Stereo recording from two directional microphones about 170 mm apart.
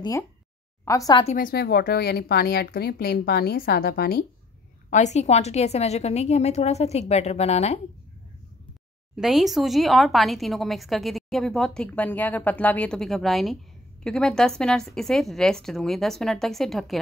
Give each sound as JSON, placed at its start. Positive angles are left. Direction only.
{"t": 0.8, "sound": "a woman's voice", "side_deg": 20}
{"t": 1.2, "sound": "a woman's voice", "side_deg": 50}
{"t": 4.8, "sound": "a woman's voice", "side_deg": 45}
{"t": 9.1, "sound": "speech", "side_deg": 0}